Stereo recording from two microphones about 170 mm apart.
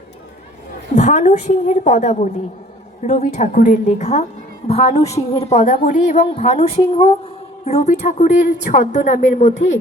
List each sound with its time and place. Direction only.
0.9 s a woman's voice: 45° left (ahead or behind)